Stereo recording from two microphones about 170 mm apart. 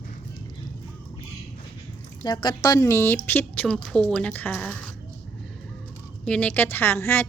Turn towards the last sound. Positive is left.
turn(degrees=15)  # may be behind; listen again after turning